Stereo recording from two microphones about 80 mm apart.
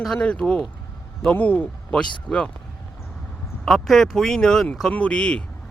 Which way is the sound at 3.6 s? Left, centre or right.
Centre.